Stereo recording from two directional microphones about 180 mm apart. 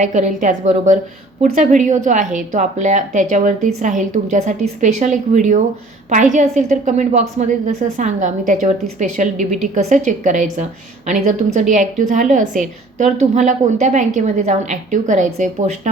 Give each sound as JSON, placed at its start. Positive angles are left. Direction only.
{"t": 0.0, "sound": "a woman's voice", "side_deg": -45}